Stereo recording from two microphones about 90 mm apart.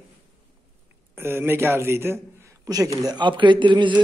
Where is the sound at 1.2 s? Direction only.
25° right (ahead or behind).